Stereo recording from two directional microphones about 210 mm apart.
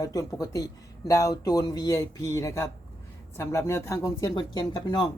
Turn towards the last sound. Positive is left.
turn(degrees=20)  # may be behind; listen again after turning